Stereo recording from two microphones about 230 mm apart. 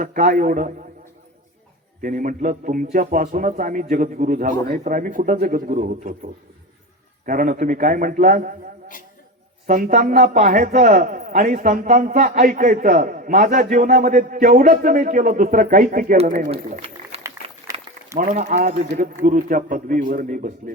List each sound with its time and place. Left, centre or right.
0.0 s a man's voice: right
2.0 s a man's voice: right
7.3 s a man's voice: right
9.6 s a man's voice: right
18.2 s a man's voice: right